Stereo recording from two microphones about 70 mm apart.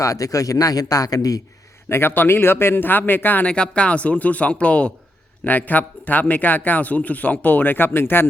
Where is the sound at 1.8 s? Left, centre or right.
Left.